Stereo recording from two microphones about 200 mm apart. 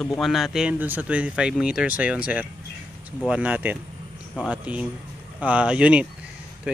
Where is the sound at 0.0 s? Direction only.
Centre (ahead or behind).